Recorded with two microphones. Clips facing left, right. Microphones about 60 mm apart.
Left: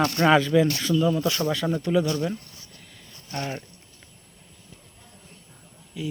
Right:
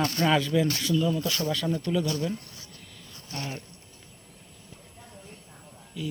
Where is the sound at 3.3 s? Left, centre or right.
Left.